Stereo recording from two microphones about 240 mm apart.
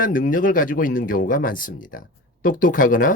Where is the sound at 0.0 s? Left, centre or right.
Left.